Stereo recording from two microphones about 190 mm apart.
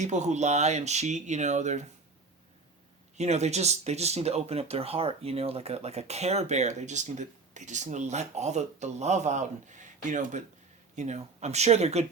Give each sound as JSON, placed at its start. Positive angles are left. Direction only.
{"t": 0.0, "sound": "speech", "side_deg": -40}
{"t": 3.2, "sound": "speech", "side_deg": -35}